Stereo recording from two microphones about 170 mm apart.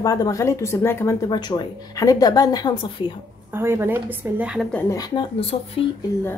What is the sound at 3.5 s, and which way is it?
Speech, 15° right (ahead or behind).